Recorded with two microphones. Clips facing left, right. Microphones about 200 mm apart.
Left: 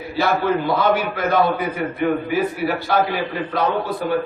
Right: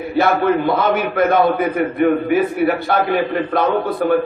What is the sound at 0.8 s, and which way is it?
A man's voice, 55° right (ahead or behind).